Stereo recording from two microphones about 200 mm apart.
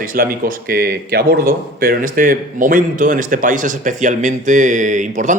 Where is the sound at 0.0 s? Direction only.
45° right (ahead or behind).